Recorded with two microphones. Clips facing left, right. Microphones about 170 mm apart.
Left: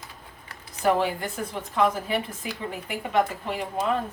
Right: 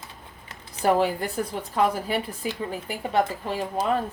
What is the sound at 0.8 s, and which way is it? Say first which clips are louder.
Speech: right 2 dB; 35° right (ahead or behind).